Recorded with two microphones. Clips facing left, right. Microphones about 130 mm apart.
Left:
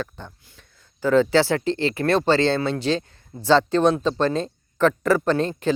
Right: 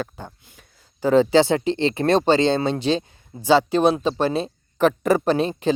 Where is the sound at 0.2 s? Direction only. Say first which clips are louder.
Right 2 dB; 10° right (ahead or behind).